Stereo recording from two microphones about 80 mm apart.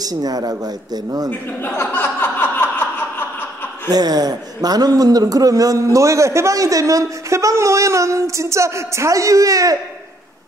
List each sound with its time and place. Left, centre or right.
0.0 s a man's voice: right
1.6 s a sound: left
3.9 s a man's voice: right